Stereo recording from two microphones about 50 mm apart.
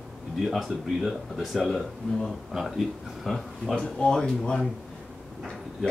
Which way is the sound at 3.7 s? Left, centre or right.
Centre.